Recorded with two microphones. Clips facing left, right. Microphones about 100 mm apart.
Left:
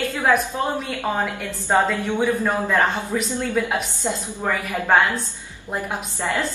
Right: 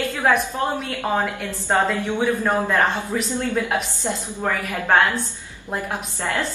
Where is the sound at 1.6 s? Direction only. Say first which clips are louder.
Left 1 dB; 10° right (ahead or behind).